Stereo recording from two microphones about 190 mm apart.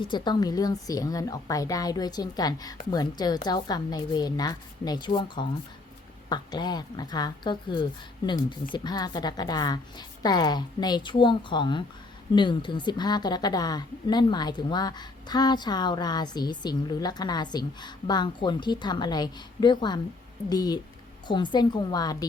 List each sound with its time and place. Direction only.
0.0 s a woman's voice: 25° left (ahead or behind)